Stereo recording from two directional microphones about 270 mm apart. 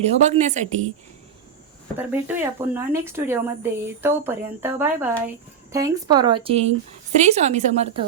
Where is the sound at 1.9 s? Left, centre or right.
Centre; by 7.8 s right.